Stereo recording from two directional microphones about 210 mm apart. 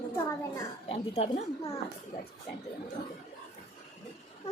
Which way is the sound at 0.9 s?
30° left (ahead or behind).